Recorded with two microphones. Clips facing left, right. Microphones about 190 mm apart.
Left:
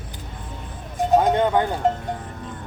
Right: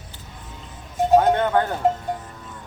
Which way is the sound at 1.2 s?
15° left (ahead or behind).